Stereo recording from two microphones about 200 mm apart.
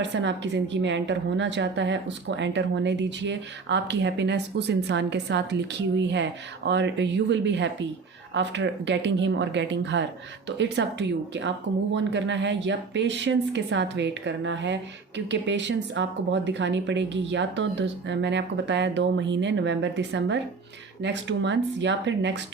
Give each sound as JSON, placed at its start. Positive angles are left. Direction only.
{"t": 0.0, "sound": "speech", "side_deg": -65}